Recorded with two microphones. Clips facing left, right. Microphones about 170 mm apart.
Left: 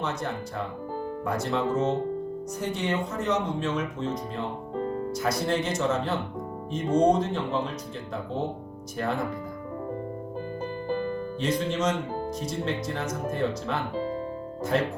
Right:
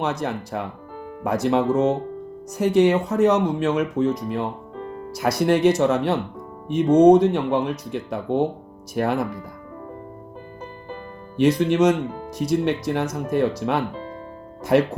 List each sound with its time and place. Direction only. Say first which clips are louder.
0.0 s speech: right 5 dB; 75° right (ahead or behind)
4.8 s music: left 5 dB; 40° left (ahead or behind)
5.1 s speech: right 9 dB; 75° right (ahead or behind)
11.3 s speech: right 11 dB; 70° right (ahead or behind)
13.9 s music: left 4 dB; 35° left (ahead or behind)
14.7 s speech: right 8 dB; 65° right (ahead or behind)